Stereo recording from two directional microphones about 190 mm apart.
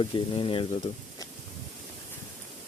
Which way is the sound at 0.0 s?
25° left (ahead or behind).